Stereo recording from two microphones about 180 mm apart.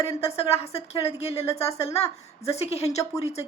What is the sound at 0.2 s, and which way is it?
A woman's voice, 35° left (ahead or behind).